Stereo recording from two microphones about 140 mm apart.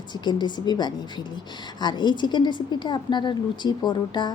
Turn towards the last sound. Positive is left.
turn(degrees=30)  # may be behind; listen again after turning